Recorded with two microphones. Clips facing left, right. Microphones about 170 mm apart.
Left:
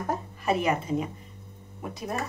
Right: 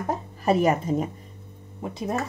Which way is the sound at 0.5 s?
40° right (ahead or behind).